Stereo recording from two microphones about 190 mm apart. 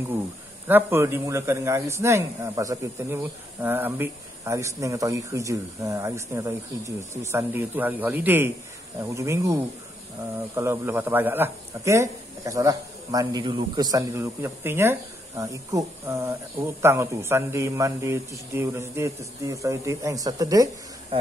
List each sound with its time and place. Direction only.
0.7 s a man's voice: 10° right (ahead or behind)